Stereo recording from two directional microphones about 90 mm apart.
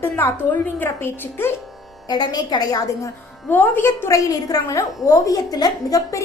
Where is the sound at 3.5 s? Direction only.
25° left (ahead or behind).